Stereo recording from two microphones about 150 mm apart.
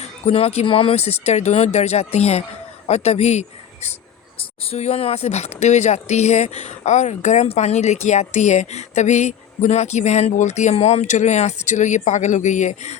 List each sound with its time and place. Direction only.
0.0 s speech: 45° left (ahead or behind)